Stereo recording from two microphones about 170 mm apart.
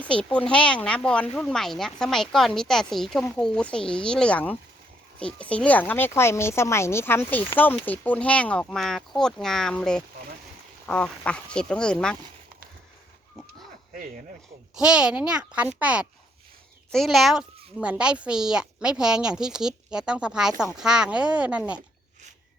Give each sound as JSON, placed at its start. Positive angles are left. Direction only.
{"t": 0.1, "sound": "speech", "side_deg": 5}
{"t": 14.8, "sound": "speech", "side_deg": -5}